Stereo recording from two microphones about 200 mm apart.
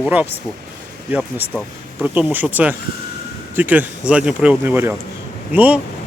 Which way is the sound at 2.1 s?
10° right (ahead or behind).